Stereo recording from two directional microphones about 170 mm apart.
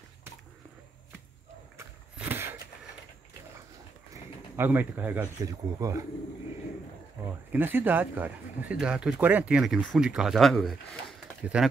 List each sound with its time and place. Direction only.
2.1 s a sound: 10° right (ahead or behind)
4.1 s pigeon: 10° right (ahead or behind)
5.4 s speech: 20° right (ahead or behind)
7.5 s speech: 10° right (ahead or behind)